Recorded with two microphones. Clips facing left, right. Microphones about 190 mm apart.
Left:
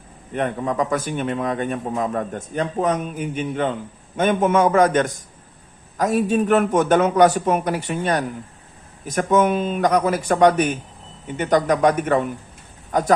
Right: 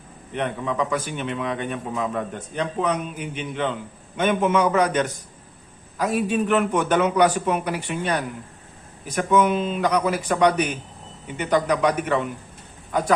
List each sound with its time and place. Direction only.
0.3 s a man's voice: 45° left (ahead or behind)